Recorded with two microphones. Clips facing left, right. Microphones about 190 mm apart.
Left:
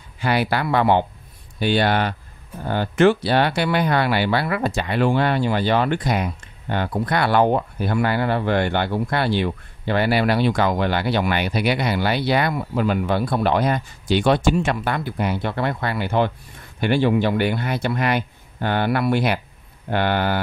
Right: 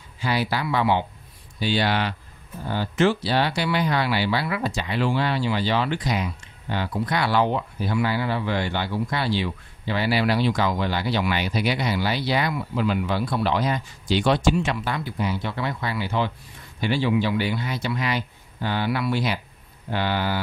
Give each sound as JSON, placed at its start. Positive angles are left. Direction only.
{"t": 0.2, "sound": "speech", "side_deg": 60}